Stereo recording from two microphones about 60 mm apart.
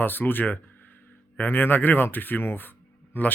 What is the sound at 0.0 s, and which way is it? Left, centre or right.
Speech, left.